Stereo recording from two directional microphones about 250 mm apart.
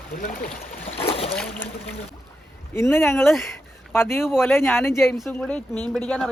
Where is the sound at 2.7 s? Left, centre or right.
Centre.